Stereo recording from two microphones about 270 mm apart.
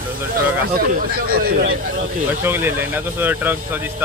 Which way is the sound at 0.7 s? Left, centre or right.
Right.